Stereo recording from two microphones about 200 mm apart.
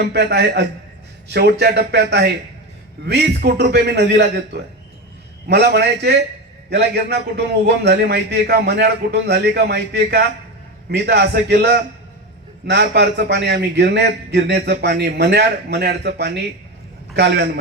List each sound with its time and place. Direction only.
0.0 s a man's voice: 55° right (ahead or behind)
5.5 s a man's voice: 55° right (ahead or behind)